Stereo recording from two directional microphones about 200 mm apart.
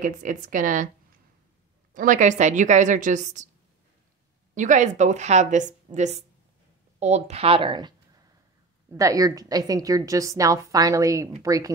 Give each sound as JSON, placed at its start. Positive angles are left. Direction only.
{"t": 0.0, "sound": "a woman's voice", "side_deg": -40}
{"t": 2.0, "sound": "a woman's voice", "side_deg": -40}
{"t": 4.6, "sound": "a woman's voice", "side_deg": -35}
{"t": 8.9, "sound": "a woman's voice", "side_deg": -15}